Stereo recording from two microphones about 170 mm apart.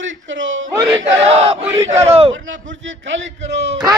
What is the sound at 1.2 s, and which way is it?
Battle cry, 35° right (ahead or behind).